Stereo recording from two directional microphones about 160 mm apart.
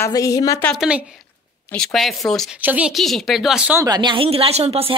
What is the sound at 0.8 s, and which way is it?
Speech, 5° right (ahead or behind).